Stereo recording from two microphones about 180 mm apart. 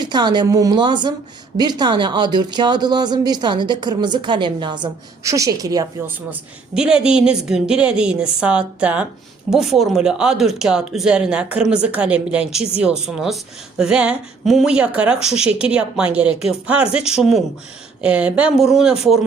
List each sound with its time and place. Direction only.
0.0 s speech: 25° right (ahead or behind)
6.7 s speech: 5° right (ahead or behind)